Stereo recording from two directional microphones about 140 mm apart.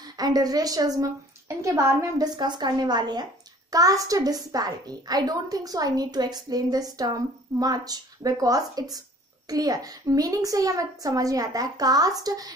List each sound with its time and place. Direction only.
0.0 s a child's voice: 30° right (ahead or behind)